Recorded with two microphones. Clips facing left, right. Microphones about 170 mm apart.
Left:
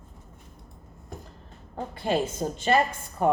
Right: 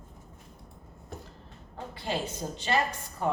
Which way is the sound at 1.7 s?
50° left (ahead or behind).